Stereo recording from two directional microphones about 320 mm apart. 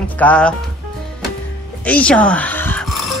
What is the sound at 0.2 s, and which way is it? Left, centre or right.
Speech, centre.